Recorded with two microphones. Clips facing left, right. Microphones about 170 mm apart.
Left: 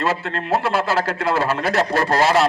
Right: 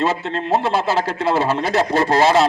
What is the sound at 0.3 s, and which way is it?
A man's voice, 20° right (ahead or behind).